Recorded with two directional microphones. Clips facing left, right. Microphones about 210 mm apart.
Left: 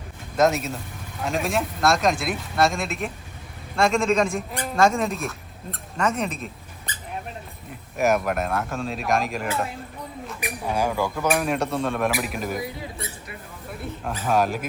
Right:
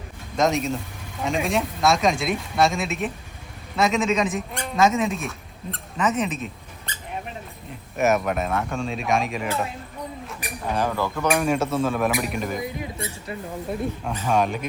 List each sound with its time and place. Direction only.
0.3 s speech: centre (ahead or behind)
7.9 s speech: centre (ahead or behind)
10.4 s speech: 10° left (ahead or behind)
12.6 s a sound: 20° right (ahead or behind)
14.0 s speech: centre (ahead or behind)